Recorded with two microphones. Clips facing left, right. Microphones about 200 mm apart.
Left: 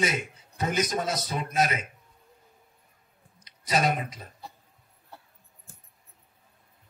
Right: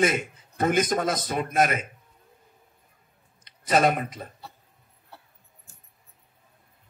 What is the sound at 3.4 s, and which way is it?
Speech, 55° right (ahead or behind).